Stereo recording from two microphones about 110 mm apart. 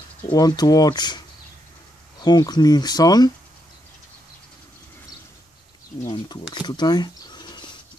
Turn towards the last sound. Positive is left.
turn(degrees=40)  # may be behind; listen again after turning